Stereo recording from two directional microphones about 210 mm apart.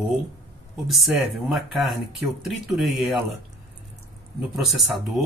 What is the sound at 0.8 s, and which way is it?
Speech, centre (ahead or behind).